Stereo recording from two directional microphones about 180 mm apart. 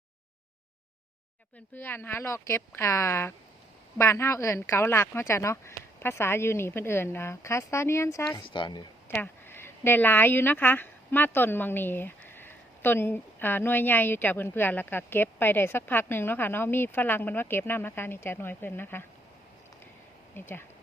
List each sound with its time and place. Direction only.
1.7 s a woman's voice: 10° left (ahead or behind)
9.0 s a woman's voice: 10° left (ahead or behind)
20.3 s a woman's voice: 10° left (ahead or behind)